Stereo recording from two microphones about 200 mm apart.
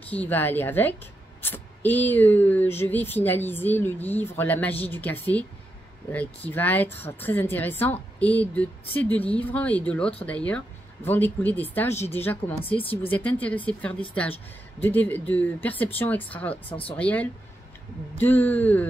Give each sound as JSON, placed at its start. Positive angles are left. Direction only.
{"t": 0.0, "sound": "speech", "side_deg": 5}